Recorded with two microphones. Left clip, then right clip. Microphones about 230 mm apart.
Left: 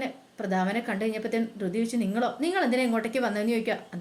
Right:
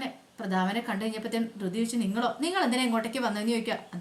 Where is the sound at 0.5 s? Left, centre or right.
Right.